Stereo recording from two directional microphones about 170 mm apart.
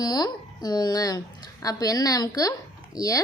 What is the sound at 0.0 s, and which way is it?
A woman's voice, 25° left (ahead or behind).